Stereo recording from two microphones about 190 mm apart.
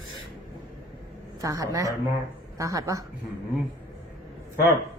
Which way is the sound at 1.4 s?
15° right (ahead or behind).